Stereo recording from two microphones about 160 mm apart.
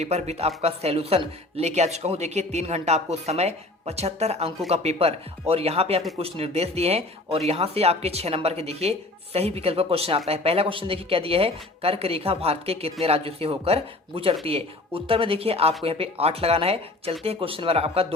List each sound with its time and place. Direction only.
0.0 s speech: 45° right (ahead or behind)